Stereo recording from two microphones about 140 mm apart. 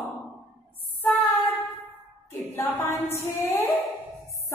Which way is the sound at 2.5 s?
15° left (ahead or behind).